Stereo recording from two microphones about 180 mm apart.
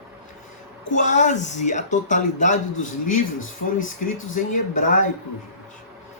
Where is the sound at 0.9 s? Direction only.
45° left (ahead or behind).